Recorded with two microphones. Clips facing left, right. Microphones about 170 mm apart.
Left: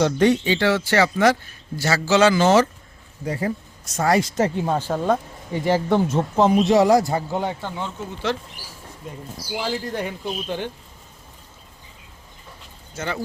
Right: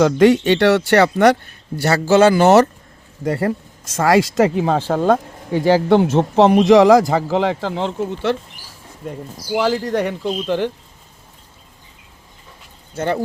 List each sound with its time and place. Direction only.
0.0 s speech: 90° right; by 2.6 s 60° right (ahead or behind)
3.2 s speech: 70° right (ahead or behind)
12.9 s speech: 60° right (ahead or behind)